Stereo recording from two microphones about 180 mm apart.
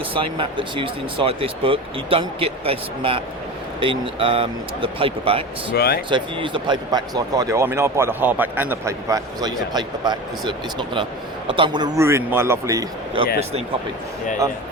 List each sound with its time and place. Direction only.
0.1 s speech: 30° right (ahead or behind)
5.7 s speech: 60° left (ahead or behind)
6.1 s speech: 25° right (ahead or behind)